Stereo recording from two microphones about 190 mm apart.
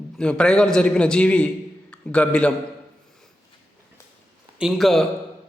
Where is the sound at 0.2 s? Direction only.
5° left (ahead or behind).